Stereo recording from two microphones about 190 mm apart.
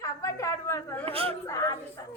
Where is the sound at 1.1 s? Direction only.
30° right (ahead or behind).